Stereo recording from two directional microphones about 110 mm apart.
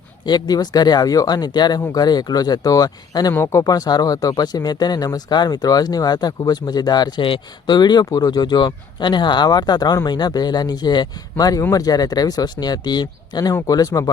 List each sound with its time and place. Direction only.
0.3 s speech: 40° left (ahead or behind)